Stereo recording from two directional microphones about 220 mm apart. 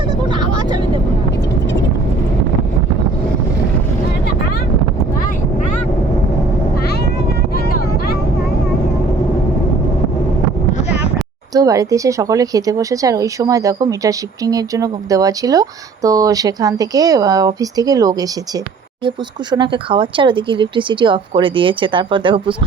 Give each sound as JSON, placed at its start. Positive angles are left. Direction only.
{"t": 0.3, "sound": "vehicle", "side_deg": -20}
{"t": 6.8, "sound": "vehicle", "side_deg": 45}
{"t": 11.5, "sound": "speech", "side_deg": -15}